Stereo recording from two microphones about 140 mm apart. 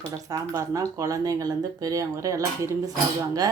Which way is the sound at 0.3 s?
25° right (ahead or behind).